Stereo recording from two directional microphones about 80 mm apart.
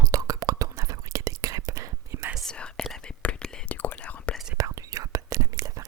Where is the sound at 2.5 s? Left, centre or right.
Centre.